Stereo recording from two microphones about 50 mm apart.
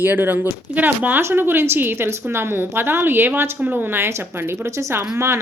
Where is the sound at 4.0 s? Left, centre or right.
Right.